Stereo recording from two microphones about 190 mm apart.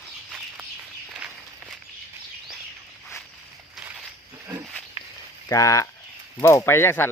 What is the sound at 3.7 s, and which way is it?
Walk, centre (ahead or behind).